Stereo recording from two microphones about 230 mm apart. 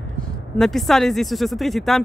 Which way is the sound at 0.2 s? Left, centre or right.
Centre.